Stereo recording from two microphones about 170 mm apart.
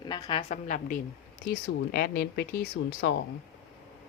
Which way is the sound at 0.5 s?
50° left (ahead or behind).